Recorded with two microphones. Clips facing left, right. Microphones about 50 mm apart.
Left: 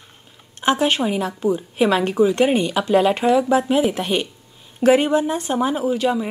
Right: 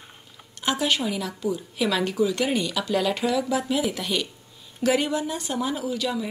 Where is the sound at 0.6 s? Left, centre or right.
Left.